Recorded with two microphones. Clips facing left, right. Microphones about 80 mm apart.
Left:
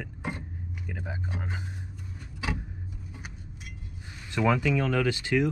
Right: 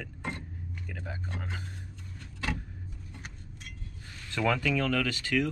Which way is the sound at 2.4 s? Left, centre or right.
Centre.